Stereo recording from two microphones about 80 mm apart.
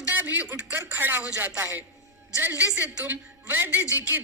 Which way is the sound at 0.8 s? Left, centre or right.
Right.